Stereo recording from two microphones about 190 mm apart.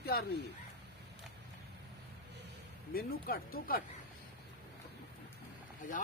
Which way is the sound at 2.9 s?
50° left (ahead or behind).